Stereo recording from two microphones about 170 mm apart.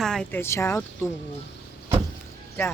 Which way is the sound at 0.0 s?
5° left (ahead or behind).